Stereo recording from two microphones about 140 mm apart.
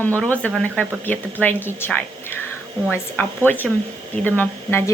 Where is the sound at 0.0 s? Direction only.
10° left (ahead or behind).